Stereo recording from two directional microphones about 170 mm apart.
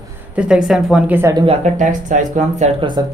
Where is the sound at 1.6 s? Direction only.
45° right (ahead or behind).